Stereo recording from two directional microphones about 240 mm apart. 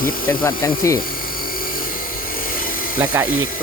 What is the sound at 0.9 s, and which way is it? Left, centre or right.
Helicopter, left.